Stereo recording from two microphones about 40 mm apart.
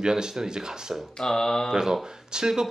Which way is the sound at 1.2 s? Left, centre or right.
Centre.